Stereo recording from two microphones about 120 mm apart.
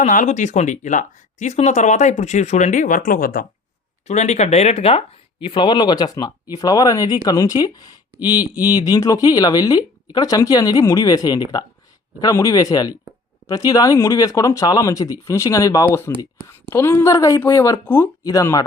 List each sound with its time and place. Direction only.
0.0 s speech: 85° left
4.0 s speech: 70° left (ahead or behind); by 18.1 s 15° left (ahead or behind)
18.2 s speech: 30° left (ahead or behind)